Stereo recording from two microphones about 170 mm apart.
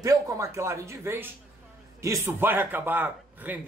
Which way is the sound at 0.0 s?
20° right (ahead or behind).